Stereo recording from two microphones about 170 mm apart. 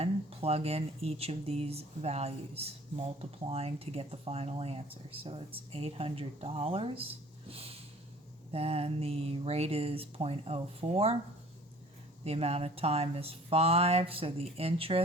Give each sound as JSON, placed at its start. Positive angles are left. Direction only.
{"t": 0.0, "sound": "speech", "side_deg": -35}
{"t": 7.5, "sound": "snort", "side_deg": -35}
{"t": 8.5, "sound": "speech", "side_deg": -35}
{"t": 12.2, "sound": "speech", "side_deg": -35}